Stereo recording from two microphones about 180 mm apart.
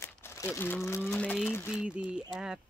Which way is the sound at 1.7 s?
5° right (ahead or behind).